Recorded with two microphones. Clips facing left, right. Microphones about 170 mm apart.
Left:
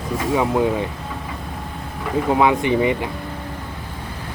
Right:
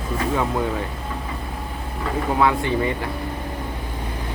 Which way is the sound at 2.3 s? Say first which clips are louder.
Left 3 dB; 20° left (ahead or behind).